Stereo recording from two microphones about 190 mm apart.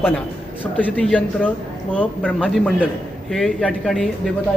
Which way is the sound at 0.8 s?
5° left (ahead or behind).